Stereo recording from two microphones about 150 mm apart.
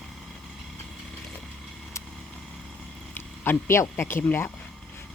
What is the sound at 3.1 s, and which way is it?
Speech, 15° left (ahead or behind).